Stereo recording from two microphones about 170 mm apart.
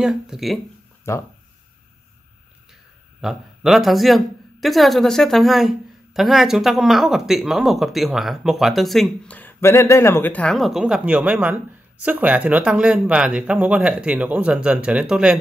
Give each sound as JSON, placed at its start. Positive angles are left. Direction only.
{"t": 0.0, "sound": "speech", "side_deg": -5}
{"t": 1.1, "sound": "speech", "side_deg": 15}
{"t": 3.2, "sound": "speech", "side_deg": 0}